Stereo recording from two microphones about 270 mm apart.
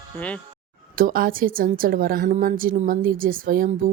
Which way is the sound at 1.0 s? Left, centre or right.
Right.